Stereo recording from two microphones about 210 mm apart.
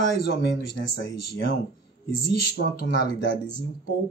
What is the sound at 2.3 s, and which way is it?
Speech, 55° left (ahead or behind).